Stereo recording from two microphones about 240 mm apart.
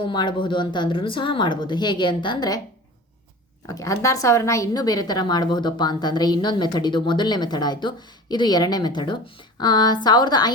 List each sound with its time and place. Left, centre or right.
0.0 s speech: centre
3.7 s a woman's voice: centre